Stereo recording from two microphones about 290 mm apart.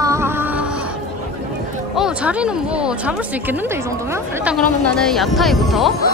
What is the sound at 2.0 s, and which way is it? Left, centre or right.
Speech, centre.